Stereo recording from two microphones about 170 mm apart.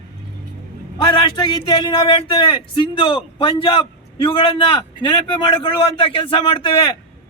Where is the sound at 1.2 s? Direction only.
25° left (ahead or behind).